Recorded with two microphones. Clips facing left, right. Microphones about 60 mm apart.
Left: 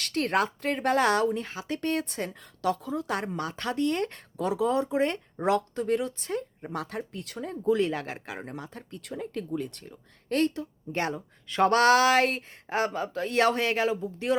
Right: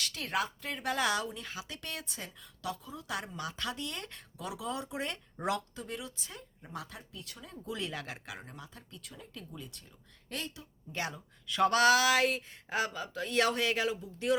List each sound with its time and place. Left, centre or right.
0.0 s speech: left
5.7 s speech: left
8.5 s speech: left